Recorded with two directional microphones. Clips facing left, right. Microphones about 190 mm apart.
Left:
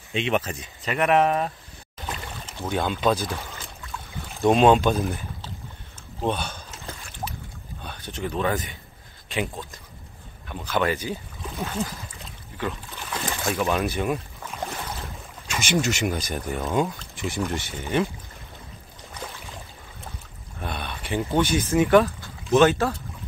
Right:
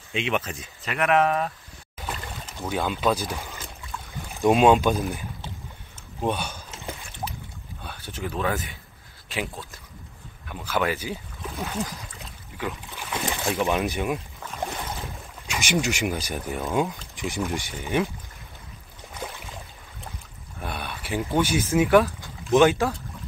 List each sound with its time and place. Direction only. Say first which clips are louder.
0.1 s speech: left 2 dB; 35° left (ahead or behind)
0.5 s speech: left 3 dB; centre (ahead or behind)
2.0 s boat: even; 5° right (ahead or behind)
2.7 s speech: left 1 dB; 5° right (ahead or behind)
4.5 s speech: left 1 dB; 5° right (ahead or behind)
6.2 s speech: even; 10° right (ahead or behind)
6.8 s boat: right 5 dB; 15° right (ahead or behind)
7.8 s speech: left 2 dB; 5° right (ahead or behind)
10.5 s speech: left 1 dB; 5° right (ahead or behind)
14.0 s boat: left 1 dB; 5° right (ahead or behind)
15.0 s speech: right 1 dB; 15° right (ahead or behind)
17.1 s a sound: left 1 dB; 15° right (ahead or behind)
17.5 s speech: even; 15° right (ahead or behind)
20.6 s speech: left 1 dB; 10° right (ahead or behind)